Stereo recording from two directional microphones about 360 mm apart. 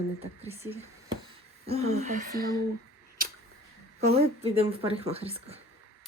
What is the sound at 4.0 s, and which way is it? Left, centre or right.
Speech, centre.